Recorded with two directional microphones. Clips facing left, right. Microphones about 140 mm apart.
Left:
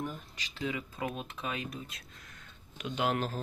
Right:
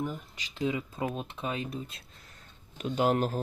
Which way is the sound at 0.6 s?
25° right (ahead or behind).